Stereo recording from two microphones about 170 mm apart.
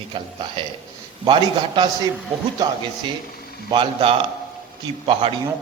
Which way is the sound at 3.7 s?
30° right (ahead or behind).